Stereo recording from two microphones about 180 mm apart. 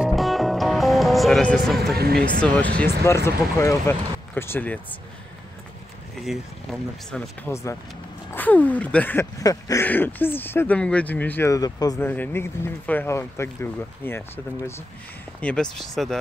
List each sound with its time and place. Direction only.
0.0 s music: centre (ahead or behind)
2.0 s speech: 60° right (ahead or behind)
2.4 s speech: 5° left (ahead or behind)
6.1 s speech: centre (ahead or behind)